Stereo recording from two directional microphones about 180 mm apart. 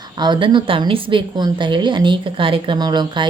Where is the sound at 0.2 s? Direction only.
25° right (ahead or behind).